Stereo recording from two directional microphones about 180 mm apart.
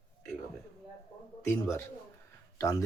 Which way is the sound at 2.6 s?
15° left (ahead or behind).